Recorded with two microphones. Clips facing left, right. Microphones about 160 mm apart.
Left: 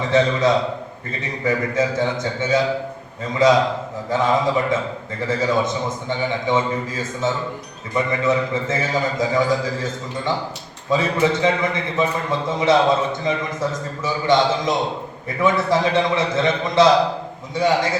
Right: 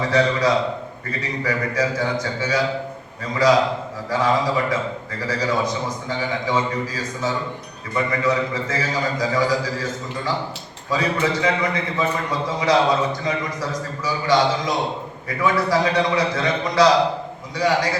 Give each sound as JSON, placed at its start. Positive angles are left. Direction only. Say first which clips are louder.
{"t": 0.1, "sound": "a man's voice", "louder": "left 3 dB", "side_deg": 25}
{"t": 10.8, "sound": "a man's voice", "louder": "left 3 dB", "side_deg": 25}
{"t": 15.4, "sound": "a man's voice", "louder": "left 1 dB", "side_deg": 25}